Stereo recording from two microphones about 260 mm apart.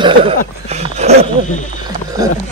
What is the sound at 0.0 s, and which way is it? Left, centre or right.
Speech, right.